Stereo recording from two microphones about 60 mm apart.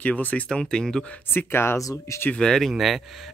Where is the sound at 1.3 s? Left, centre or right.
Left.